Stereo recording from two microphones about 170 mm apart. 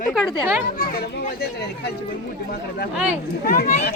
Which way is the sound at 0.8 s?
65° left (ahead or behind).